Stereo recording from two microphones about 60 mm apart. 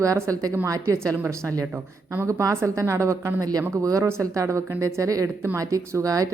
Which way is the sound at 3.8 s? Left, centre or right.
Right.